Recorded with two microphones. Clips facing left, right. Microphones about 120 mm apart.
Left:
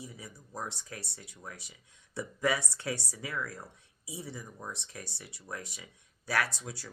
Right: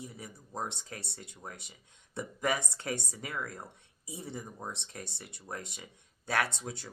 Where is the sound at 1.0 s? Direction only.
60° right (ahead or behind).